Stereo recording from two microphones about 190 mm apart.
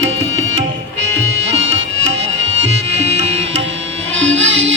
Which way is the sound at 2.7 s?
35° right (ahead or behind).